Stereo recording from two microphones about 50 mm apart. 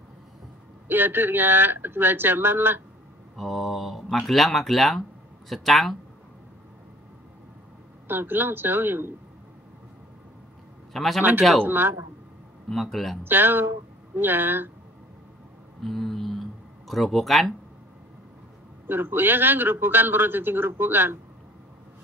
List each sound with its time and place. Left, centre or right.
0.8 s a man's voice: right
3.3 s speech: centre
8.1 s a man's voice: right
10.9 s a man's voice: centre
11.6 s a man's voice: right
12.6 s speech: centre
13.2 s a man's voice: right
15.8 s a sound: centre
18.9 s a man's voice: right